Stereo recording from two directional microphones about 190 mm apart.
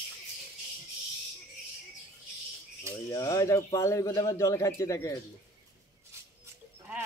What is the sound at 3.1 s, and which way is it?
A man's voice, 15° left (ahead or behind).